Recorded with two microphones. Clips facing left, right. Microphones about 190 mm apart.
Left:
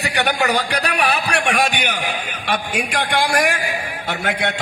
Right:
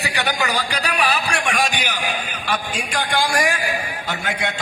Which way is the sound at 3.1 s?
60° left (ahead or behind).